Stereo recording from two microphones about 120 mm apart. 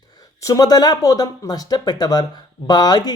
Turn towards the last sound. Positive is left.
turn(degrees=35)  # may be behind; listen again after turning